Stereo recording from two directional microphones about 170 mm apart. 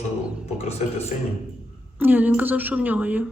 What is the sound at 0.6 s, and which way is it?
Speech, 40° left (ahead or behind).